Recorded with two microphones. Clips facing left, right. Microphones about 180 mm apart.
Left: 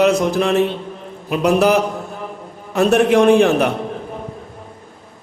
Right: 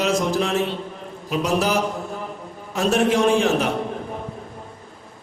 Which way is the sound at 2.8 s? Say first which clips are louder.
Left 6 dB; 60° left (ahead or behind).